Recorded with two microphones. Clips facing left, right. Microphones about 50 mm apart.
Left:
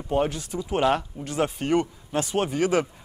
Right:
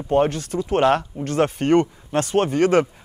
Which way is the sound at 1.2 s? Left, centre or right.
Right.